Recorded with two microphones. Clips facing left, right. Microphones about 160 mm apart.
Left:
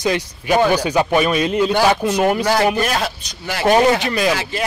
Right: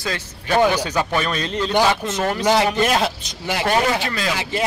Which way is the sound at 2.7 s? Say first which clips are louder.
Right 1 dB; 20° right (ahead or behind).